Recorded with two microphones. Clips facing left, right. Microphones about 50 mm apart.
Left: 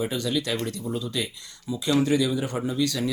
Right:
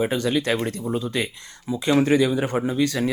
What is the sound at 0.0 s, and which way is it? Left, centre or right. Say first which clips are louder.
Speech: right 5 dB; right.